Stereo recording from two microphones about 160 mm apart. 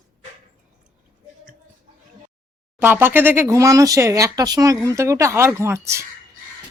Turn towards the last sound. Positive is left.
turn(degrees=-15)  # may be behind; listen again after turning